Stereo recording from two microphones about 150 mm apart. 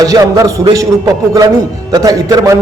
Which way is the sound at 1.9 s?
25° right (ahead or behind).